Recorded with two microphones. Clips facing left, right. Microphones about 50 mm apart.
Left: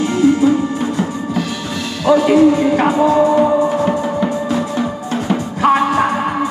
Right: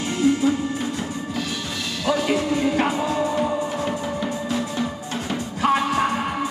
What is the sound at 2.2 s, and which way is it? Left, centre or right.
Music, left.